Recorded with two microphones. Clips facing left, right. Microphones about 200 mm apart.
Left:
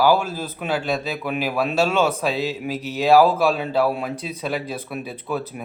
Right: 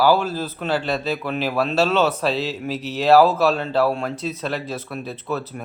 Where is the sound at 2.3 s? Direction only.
50° left (ahead or behind).